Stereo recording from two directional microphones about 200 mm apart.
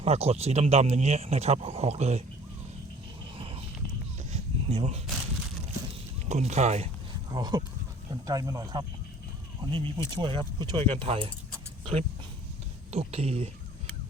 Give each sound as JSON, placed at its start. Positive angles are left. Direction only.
{"t": 0.0, "sound": "speech", "side_deg": -30}
{"t": 3.3, "sound": "a sound", "side_deg": -25}
{"t": 6.2, "sound": "speech", "side_deg": -35}
{"t": 7.3, "sound": "speech", "side_deg": -20}